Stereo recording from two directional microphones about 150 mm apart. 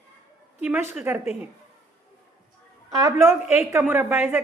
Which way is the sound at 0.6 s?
10° right (ahead or behind).